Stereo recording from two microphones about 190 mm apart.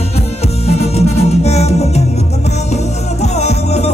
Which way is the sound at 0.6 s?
35° left (ahead or behind).